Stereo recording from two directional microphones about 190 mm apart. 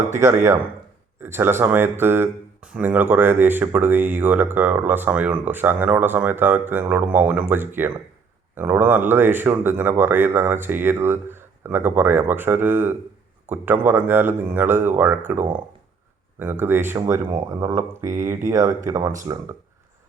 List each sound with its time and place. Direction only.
0.1 s speech: 15° right (ahead or behind)